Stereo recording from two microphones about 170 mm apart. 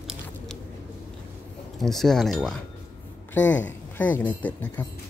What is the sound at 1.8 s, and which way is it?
Speech, centre (ahead or behind).